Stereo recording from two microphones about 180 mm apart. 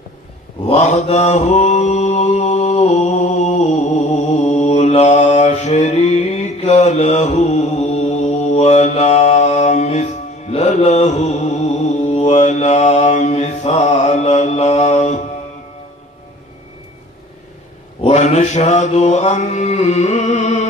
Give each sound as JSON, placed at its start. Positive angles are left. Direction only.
{"t": 0.7, "sound": "mantra", "side_deg": 40}
{"t": 18.0, "sound": "mantra", "side_deg": 40}